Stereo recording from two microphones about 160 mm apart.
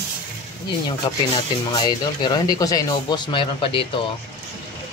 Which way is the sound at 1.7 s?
25° left (ahead or behind).